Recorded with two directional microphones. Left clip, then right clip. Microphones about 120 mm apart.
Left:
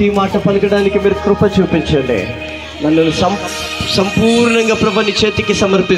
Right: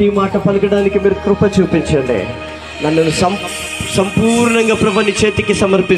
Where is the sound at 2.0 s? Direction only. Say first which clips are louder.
Left 1 dB; 55° left (ahead or behind).